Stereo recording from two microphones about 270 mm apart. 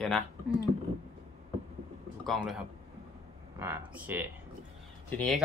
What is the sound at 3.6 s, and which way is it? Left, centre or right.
A woman's voice, centre.